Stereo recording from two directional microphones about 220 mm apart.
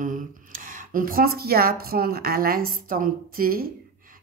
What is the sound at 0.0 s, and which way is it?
A woman's voice, 35° right (ahead or behind).